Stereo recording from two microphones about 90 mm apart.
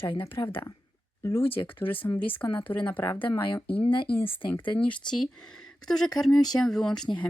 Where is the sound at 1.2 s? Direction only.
30° left (ahead or behind).